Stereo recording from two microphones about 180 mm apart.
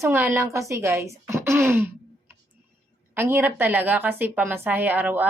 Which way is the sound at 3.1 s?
10° right (ahead or behind).